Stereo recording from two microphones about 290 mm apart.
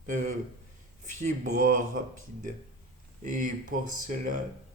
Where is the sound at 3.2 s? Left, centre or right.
Right.